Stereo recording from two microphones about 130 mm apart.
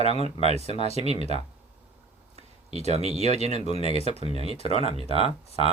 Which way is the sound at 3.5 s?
50° left (ahead or behind).